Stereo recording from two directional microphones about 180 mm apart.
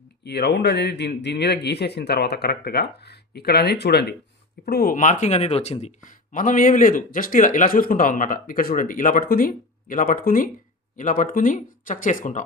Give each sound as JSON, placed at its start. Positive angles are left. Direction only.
{"t": 0.3, "sound": "speech", "side_deg": 65}